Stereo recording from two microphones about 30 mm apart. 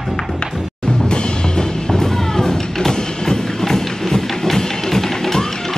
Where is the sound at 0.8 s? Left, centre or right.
Left.